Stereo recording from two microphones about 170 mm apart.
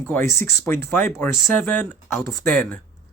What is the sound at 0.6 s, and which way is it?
Speech, 15° left (ahead or behind).